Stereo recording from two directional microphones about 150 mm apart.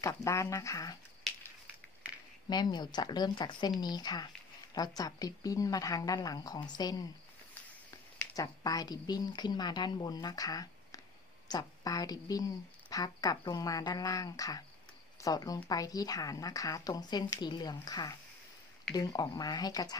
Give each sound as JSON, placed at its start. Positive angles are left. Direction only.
{"t": 0.0, "sound": "a woman's voice", "side_deg": 20}
{"t": 1.3, "sound": "a sound", "side_deg": 0}
{"t": 2.5, "sound": "a woman's voice", "side_deg": 30}
{"t": 8.4, "sound": "a woman's voice", "side_deg": 25}